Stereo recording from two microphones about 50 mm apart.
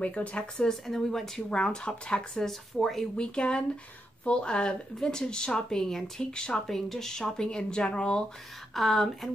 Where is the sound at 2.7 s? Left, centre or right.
Centre.